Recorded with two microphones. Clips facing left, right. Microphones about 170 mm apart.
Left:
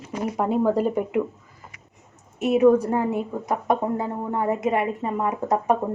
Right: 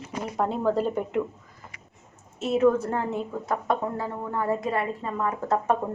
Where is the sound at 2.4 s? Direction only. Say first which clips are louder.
Left 4 dB; 15° left (ahead or behind).